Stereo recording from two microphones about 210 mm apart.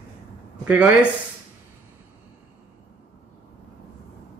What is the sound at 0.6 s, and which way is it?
Speech, 5° right (ahead or behind).